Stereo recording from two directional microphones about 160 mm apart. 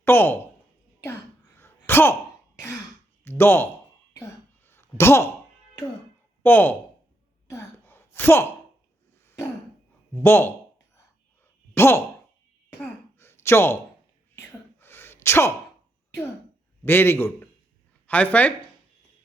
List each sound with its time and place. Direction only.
0.0 s a sound: 15° left (ahead or behind)
1.5 s a sound: 15° left (ahead or behind)
3.2 s speech: 15° left (ahead or behind)
4.1 s a sound: 15° left (ahead or behind)
6.4 s speech: 10° left (ahead or behind)
7.4 s gasp: 15° left (ahead or behind)
10.2 s a man's voice: 15° left (ahead or behind)
11.7 s sigh: 15° left (ahead or behind)
14.3 s whispering: 15° left (ahead or behind)
16.8 s a man's voice: 15° left (ahead or behind)